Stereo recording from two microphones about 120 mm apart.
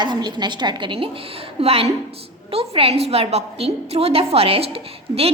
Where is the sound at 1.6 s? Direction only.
55° right (ahead or behind).